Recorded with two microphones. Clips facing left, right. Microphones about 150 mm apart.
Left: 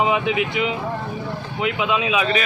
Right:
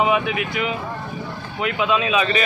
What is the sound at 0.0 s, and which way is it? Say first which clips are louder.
Speech: even; 20° left (ahead or behind).